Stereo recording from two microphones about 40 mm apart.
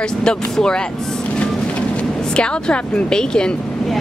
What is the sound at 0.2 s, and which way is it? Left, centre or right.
Speech, left.